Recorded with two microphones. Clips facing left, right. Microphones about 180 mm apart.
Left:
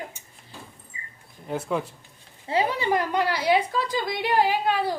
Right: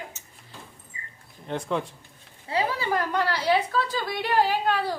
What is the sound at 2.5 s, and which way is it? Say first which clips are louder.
A woman's voice: left 3 dB; 25° left (ahead or behind).